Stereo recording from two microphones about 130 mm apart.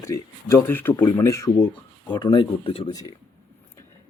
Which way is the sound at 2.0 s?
35° left (ahead or behind).